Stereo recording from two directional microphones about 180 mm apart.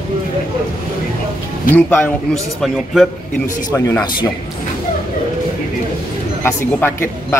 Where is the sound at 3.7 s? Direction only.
15° left (ahead or behind).